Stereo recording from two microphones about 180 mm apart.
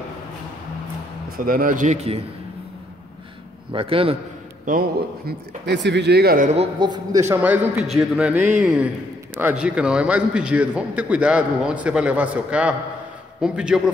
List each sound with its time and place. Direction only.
1.4 s a man's voice: 50° right (ahead or behind); by 2.2 s 35° right (ahead or behind)
3.7 s a man's voice: 30° right (ahead or behind)
5.7 s speech: 70° right (ahead or behind); by 6.5 s 55° right (ahead or behind)
6.8 s a man's voice: 25° right (ahead or behind)
7.3 s a man's voice: 10° right (ahead or behind)